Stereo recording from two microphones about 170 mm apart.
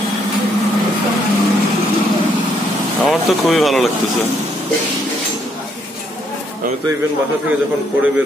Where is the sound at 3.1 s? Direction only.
Centre (ahead or behind).